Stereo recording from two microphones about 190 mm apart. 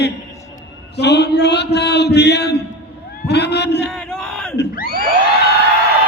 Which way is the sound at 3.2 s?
60° left (ahead or behind).